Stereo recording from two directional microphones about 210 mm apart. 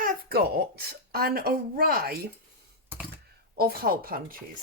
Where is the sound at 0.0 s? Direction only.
50° right (ahead or behind).